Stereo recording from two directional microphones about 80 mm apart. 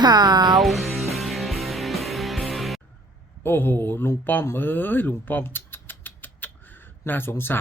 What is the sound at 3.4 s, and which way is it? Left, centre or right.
Speech, left.